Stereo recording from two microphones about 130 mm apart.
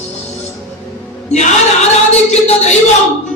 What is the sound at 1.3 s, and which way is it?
Music, 60° left (ahead or behind).